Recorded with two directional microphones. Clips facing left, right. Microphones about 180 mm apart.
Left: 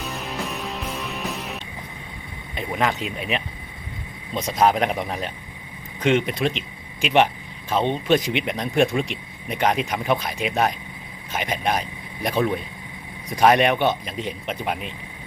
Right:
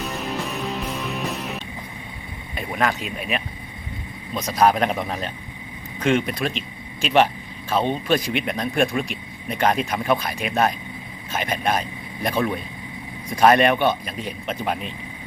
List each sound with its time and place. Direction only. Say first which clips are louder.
0.0 s music: right 2 dB; centre (ahead or behind)
2.6 s a man's voice: even; 20° left (ahead or behind)